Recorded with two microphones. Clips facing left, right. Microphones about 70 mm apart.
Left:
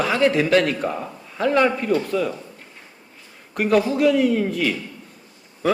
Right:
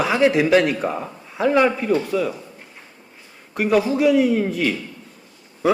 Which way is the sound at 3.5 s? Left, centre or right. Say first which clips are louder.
Even; centre.